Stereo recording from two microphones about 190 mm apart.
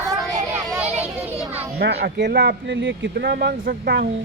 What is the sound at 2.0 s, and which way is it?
Speech, 60° right (ahead or behind).